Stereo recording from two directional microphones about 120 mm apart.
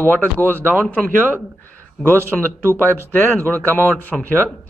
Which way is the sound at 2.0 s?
20° right (ahead or behind).